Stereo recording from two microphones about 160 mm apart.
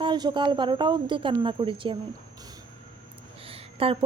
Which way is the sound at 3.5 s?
35° right (ahead or behind).